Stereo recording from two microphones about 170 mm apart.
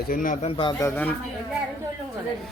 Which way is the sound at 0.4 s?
35° left (ahead or behind).